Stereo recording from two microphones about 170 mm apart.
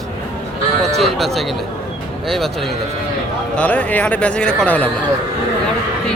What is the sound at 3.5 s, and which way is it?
Speech, 10° left (ahead or behind).